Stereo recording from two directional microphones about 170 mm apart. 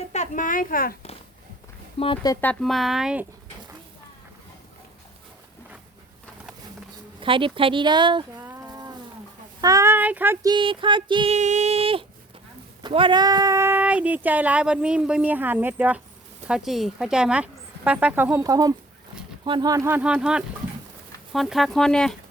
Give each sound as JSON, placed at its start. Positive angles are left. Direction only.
{"t": 0.1, "sound": "a woman's voice", "side_deg": 45}
{"t": 2.0, "sound": "speech", "side_deg": 30}
{"t": 2.3, "sound": "speech", "side_deg": 10}
{"t": 7.2, "sound": "speech", "side_deg": -30}
{"t": 8.4, "sound": "a sound", "side_deg": -15}
{"t": 9.6, "sound": "speech", "side_deg": -20}
{"t": 10.4, "sound": "speech", "side_deg": -30}
{"t": 11.3, "sound": "a sound", "side_deg": -45}
{"t": 12.8, "sound": "speech", "side_deg": -30}
{"t": 18.4, "sound": "speech", "side_deg": -20}